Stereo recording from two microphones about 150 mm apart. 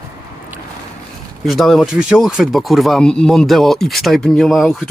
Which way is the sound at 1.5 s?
Centre (ahead or behind).